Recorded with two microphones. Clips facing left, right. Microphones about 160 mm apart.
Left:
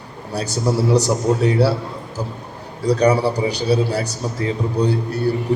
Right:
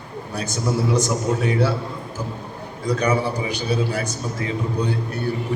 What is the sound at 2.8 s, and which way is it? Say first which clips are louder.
A man's voice: left 5 dB; 35° left (ahead or behind).